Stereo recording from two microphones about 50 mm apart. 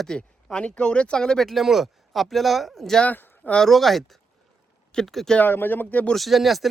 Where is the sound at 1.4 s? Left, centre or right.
Centre.